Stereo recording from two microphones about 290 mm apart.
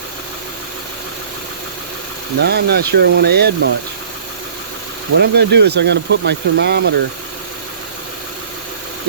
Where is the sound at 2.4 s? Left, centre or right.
Right.